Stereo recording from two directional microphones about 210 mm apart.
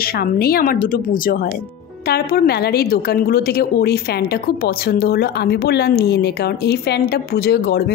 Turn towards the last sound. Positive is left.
turn(degrees=50)  # may be behind; listen again after turning